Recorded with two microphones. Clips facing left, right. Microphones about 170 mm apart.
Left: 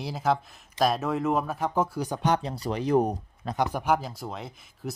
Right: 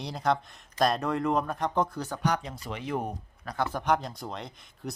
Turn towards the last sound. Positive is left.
turn(degrees=5)  # may be behind; listen again after turning